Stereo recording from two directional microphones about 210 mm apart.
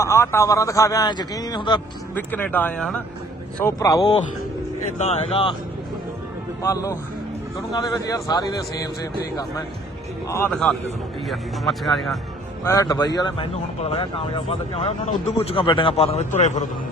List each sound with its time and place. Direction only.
0.0 s speech: 15° left (ahead or behind)
2.1 s speech: 10° left (ahead or behind)
4.9 s speech: 30° left (ahead or behind)
6.6 s speech: 15° left (ahead or behind)
10.5 s speech: centre (ahead or behind)
12.6 s speech: 15° left (ahead or behind); by 16.6 s 35° left (ahead or behind)